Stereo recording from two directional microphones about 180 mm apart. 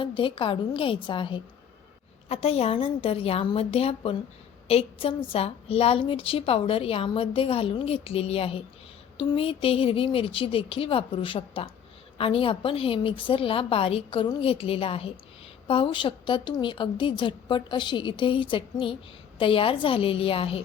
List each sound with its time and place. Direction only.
0.0 s a woman's voice: 30° left (ahead or behind)